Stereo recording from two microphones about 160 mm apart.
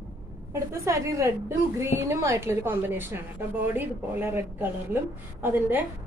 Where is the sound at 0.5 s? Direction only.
20° right (ahead or behind).